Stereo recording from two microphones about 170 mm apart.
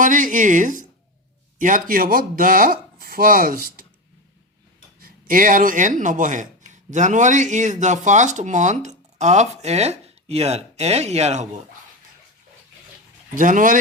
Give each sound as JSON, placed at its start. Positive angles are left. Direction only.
{"t": 0.0, "sound": "speech", "side_deg": -50}
{"t": 4.9, "sound": "speech", "side_deg": -55}
{"t": 13.3, "sound": "speech", "side_deg": -50}